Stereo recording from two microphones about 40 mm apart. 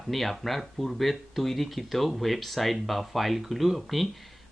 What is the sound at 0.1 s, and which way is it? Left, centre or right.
Speech, centre.